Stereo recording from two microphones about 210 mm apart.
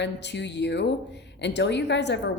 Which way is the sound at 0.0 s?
55° left (ahead or behind).